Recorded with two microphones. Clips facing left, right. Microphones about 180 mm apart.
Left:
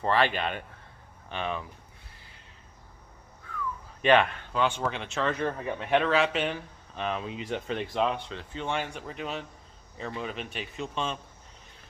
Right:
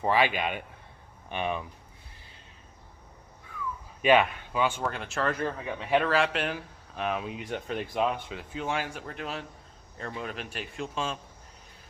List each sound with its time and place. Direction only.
0.0 s speech: 10° right (ahead or behind)
4.0 s speech: 10° right (ahead or behind)